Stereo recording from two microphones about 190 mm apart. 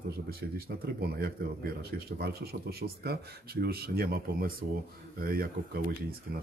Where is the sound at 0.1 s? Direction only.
55° right (ahead or behind).